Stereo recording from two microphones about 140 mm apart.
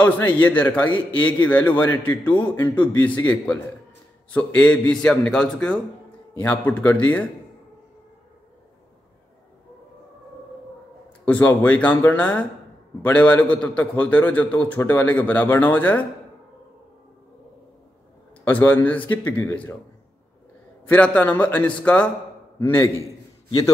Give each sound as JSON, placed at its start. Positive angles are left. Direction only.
{"t": 0.0, "sound": "a man's voice", "side_deg": 10}
{"t": 11.2, "sound": "a man's voice", "side_deg": 10}
{"t": 18.4, "sound": "a man's voice", "side_deg": 10}
{"t": 20.9, "sound": "a man's voice", "side_deg": 10}